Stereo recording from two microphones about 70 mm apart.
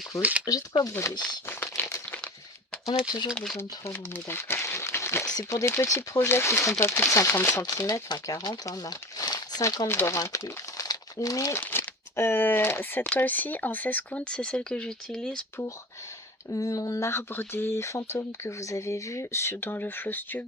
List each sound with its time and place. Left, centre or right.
0.2 s speech: centre
0.4 s speech: left
1.5 s crumpling: left
2.8 s speech: left
3.3 s speech: centre
4.1 s speech: left
7.6 s speech: left
9.8 s speech: left
10.2 s speech: left
11.5 s speech: left; by 15.4 s centre
16.5 s speech: left